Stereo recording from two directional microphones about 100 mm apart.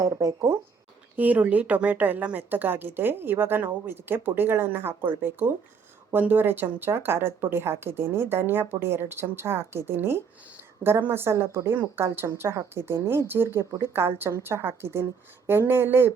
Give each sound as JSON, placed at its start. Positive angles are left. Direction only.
{"t": 0.0, "sound": "speech", "side_deg": -35}
{"t": 1.1, "sound": "a woman's voice", "side_deg": -15}